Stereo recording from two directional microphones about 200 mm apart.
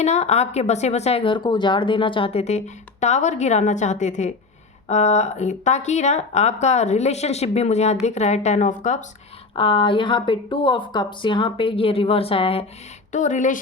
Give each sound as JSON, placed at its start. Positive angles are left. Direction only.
{"t": 0.0, "sound": "speech", "side_deg": 35}
{"t": 9.6, "sound": "a woman's voice", "side_deg": 25}